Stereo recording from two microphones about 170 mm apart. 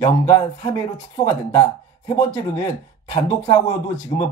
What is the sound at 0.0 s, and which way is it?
Speech, 20° left (ahead or behind).